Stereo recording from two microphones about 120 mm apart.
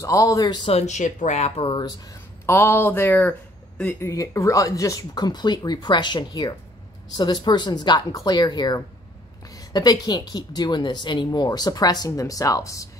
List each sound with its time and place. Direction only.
0.0 s speech: 30° left (ahead or behind)
0.8 s speech: 90° left
1.6 s speech: 45° left (ahead or behind)
2.4 s speech: 20° left (ahead or behind)
4.1 s speech: 25° left (ahead or behind)